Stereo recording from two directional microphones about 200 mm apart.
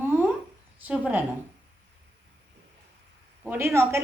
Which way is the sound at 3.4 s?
10° right (ahead or behind).